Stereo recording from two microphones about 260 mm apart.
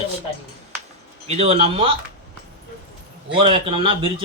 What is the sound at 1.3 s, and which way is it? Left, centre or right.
Speech, right.